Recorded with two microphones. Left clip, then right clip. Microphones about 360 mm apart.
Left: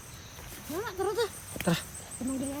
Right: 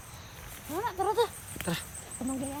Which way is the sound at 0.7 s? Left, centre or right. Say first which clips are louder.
Right 3 dB; right.